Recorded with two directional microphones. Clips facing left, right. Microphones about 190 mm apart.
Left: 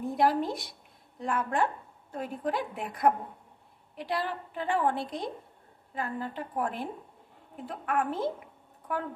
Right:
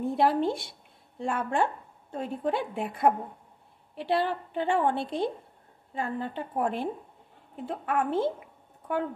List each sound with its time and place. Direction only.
0.0 s a woman's voice: 25° right (ahead or behind)